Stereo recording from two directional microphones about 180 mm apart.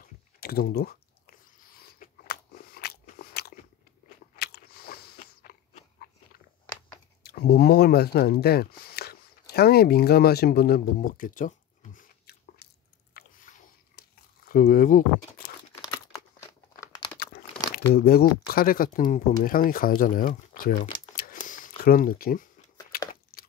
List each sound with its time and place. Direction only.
0.0 s chewing: 55° left (ahead or behind)
4.4 s biting: 60° left (ahead or behind)
7.2 s speech: 60° left (ahead or behind)
12.6 s drip: 60° left (ahead or behind)
13.1 s a sound: 45° left (ahead or behind)
14.5 s speech: 50° left (ahead or behind)
15.7 s crumpling: 15° left (ahead or behind)
17.9 s speech: 60° left (ahead or behind)
21.2 s a sound: 50° left (ahead or behind)